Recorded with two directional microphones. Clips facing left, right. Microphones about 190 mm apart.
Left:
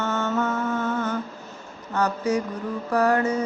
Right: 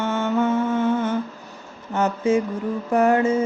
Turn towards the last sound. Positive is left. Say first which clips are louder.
# right 3 dB
turn(degrees=-25)  # may be behind; listen again after turning